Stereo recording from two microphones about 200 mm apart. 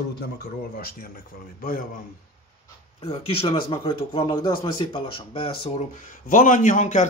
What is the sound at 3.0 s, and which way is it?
Speech, 30° left (ahead or behind).